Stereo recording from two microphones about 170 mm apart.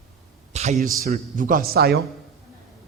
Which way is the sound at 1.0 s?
55° right (ahead or behind).